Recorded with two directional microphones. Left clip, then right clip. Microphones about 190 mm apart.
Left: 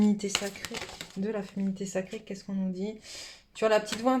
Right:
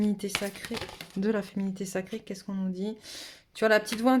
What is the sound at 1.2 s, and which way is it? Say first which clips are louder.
Speech: right 4 dB; 45° right (ahead or behind).